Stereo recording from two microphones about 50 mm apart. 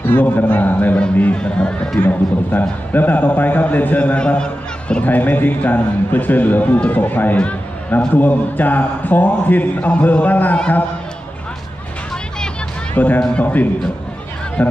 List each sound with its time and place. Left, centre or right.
0.0 s a man's voice: left
1.3 s speech: centre
2.0 s a man's voice: left
4.4 s a sound: centre
5.0 s a man's voice: left
12.9 s speech: left
13.3 s a man's voice: left
14.6 s speech: left